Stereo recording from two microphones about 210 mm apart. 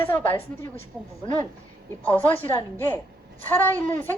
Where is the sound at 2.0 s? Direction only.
5° left (ahead or behind).